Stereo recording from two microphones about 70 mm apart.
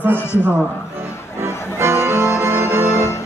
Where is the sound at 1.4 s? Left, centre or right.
Right.